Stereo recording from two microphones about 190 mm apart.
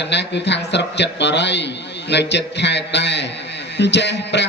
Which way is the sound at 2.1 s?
65° left (ahead or behind).